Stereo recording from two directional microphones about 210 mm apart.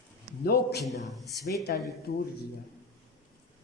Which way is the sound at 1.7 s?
45° left (ahead or behind).